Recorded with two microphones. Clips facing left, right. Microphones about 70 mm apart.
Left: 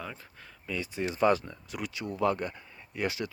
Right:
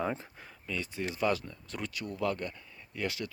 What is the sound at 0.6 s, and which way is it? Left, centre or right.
Speech, centre.